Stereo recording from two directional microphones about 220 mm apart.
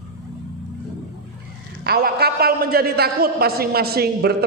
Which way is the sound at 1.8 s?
45° right (ahead or behind).